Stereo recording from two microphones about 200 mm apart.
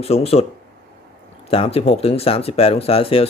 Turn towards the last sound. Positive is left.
turn(degrees=30)  # may be behind; listen again after turning